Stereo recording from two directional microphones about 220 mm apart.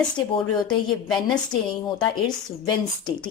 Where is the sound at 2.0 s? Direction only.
20° left (ahead or behind).